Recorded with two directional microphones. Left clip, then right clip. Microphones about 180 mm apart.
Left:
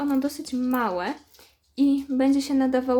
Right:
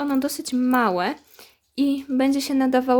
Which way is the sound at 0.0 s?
50° right (ahead or behind).